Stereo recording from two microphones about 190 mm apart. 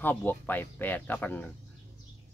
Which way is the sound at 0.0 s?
10° left (ahead or behind).